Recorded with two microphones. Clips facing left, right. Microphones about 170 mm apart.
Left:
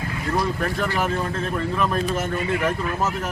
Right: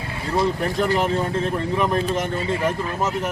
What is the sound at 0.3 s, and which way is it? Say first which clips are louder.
Speech: right 4 dB; 20° right (ahead or behind).